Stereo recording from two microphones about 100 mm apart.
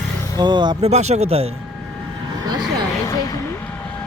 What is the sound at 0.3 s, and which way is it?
Speech, 50° right (ahead or behind).